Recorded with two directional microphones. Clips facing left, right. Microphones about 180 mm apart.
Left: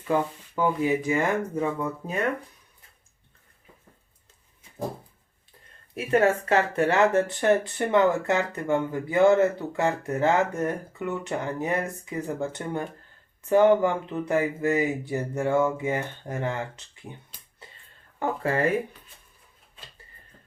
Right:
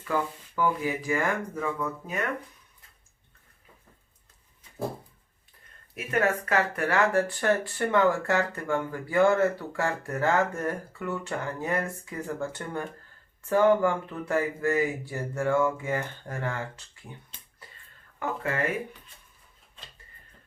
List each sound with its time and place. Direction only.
0.0 s speech: 25° left (ahead or behind)
5.9 s speech: 30° left (ahead or behind)
18.2 s speech: 30° left (ahead or behind)